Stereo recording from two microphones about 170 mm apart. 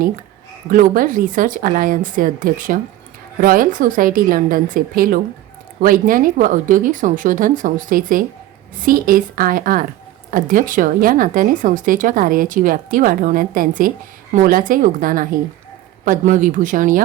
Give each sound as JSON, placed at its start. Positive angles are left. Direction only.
{"t": 0.7, "sound": "a woman's voice", "side_deg": -55}